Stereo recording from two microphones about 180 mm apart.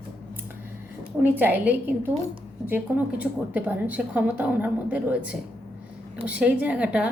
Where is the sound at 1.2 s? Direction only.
10° right (ahead or behind).